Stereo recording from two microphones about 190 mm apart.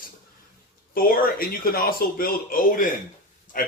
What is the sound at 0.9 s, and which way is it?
A man's voice, 50° left (ahead or behind).